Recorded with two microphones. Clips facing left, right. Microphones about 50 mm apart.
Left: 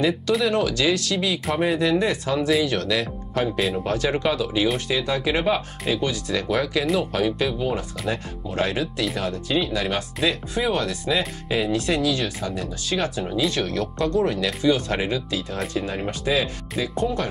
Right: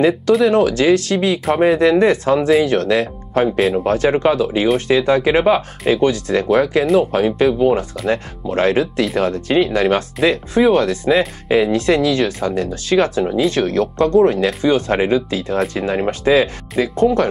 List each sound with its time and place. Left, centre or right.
0.5 s speech: right